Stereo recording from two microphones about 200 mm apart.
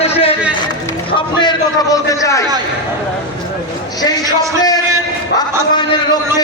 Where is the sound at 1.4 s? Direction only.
20° left (ahead or behind).